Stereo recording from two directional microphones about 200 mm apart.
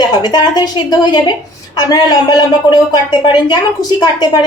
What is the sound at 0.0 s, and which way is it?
Speech, 20° left (ahead or behind).